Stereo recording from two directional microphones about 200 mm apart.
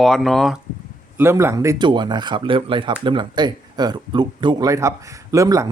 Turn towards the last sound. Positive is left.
turn(degrees=-15)  # may be behind; listen again after turning